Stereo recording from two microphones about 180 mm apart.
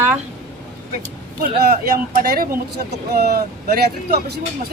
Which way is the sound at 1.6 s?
55° right (ahead or behind).